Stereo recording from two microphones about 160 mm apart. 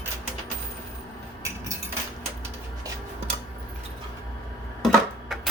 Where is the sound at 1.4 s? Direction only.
20° right (ahead or behind).